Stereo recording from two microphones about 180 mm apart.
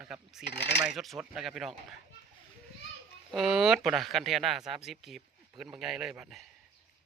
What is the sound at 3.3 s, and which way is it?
Speech, centre (ahead or behind).